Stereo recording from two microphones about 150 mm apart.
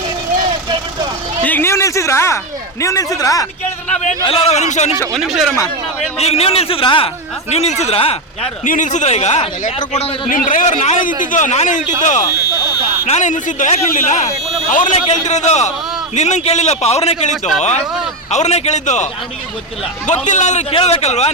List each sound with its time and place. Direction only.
1.5 s a sound: 15° left (ahead or behind)
2.8 s speech: 20° left (ahead or behind)
4.2 s a man's voice: 40° left (ahead or behind)
5.1 s speech: centre (ahead or behind)
6.1 s a man's voice: 45° left (ahead or behind)
7.5 s a man's voice: 45° left (ahead or behind)
8.6 s a man's voice: 55° left (ahead or behind)
10.2 s a man's voice: 65° left (ahead or behind)
15.0 s a man's voice: 50° left (ahead or behind)
20.2 s a man's voice: 55° left (ahead or behind)